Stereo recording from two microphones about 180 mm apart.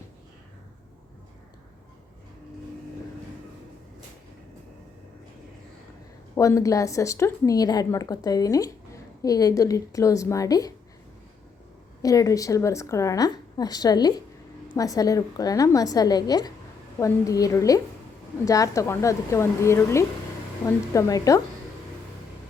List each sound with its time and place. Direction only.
6.3 s a woman's voice: 15° left (ahead or behind)
12.0 s a woman's voice: 20° left (ahead or behind)